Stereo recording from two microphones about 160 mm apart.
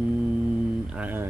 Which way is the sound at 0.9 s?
10° right (ahead or behind).